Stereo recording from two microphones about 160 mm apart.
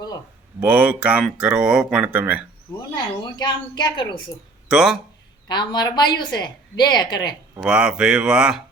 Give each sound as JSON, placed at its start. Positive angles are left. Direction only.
{"t": 0.6, "sound": "speech", "side_deg": -10}
{"t": 2.9, "sound": "speech", "side_deg": 25}
{"t": 4.7, "sound": "speech", "side_deg": -5}
{"t": 5.5, "sound": "speech", "side_deg": 30}
{"t": 7.6, "sound": "speech", "side_deg": -5}